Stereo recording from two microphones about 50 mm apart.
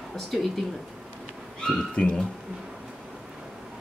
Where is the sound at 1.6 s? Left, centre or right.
Left.